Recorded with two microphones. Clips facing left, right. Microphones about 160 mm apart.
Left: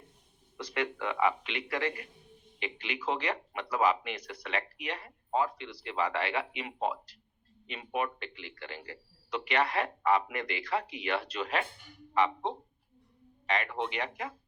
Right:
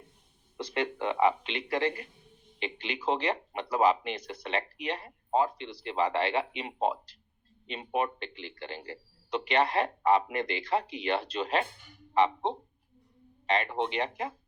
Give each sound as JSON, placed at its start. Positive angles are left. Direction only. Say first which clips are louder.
{"t": 0.5, "sound": "speech", "louder": "right 2 dB", "side_deg": -25}